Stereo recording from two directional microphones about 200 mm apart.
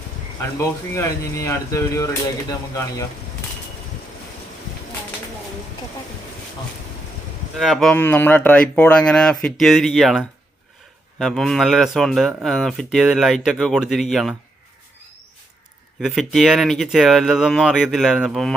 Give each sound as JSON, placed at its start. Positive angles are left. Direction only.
{"t": 0.9, "sound": "speech", "side_deg": 15}
{"t": 7.6, "sound": "speech", "side_deg": 0}
{"t": 16.0, "sound": "speech", "side_deg": 0}